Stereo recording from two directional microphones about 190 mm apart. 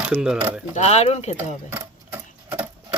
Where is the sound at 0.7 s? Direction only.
35° left (ahead or behind).